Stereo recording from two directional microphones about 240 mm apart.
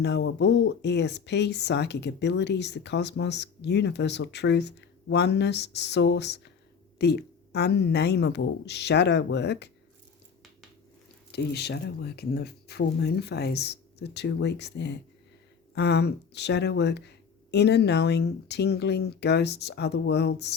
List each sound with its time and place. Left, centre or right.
0.0 s speech: left
11.3 s speech: left